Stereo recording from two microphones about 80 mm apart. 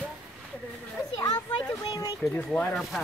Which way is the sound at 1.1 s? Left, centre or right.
Left.